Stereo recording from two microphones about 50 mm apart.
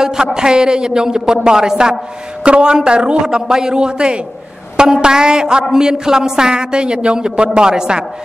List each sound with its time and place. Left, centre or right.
0.0 s a woman's voice: centre